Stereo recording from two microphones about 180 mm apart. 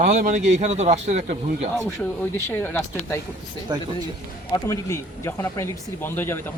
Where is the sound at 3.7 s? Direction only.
25° right (ahead or behind).